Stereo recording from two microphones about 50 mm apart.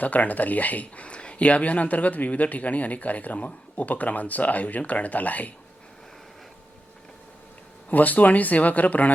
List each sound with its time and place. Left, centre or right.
0.0 s speech: left
7.9 s speech: left